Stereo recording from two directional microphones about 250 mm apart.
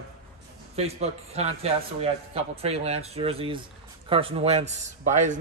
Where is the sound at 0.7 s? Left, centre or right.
Right.